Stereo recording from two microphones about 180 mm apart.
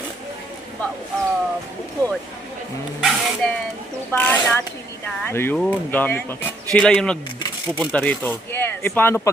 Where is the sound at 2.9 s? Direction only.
Centre (ahead or behind).